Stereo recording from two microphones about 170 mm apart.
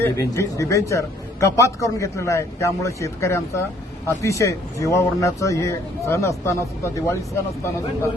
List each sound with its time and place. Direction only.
0.0 s speech: 20° left (ahead or behind)